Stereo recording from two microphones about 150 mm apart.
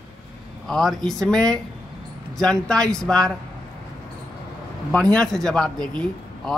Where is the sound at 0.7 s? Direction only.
5° left (ahead or behind).